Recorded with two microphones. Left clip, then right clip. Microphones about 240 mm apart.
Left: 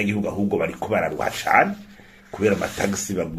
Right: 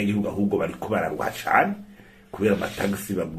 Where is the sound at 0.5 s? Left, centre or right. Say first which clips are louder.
Left 4 dB; left.